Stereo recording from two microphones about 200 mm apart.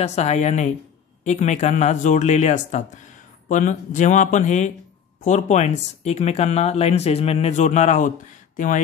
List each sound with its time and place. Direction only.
0.0 s speech: 35° left (ahead or behind)